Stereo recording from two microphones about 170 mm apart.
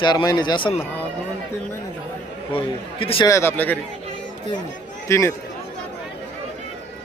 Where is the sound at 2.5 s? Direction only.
30° left (ahead or behind).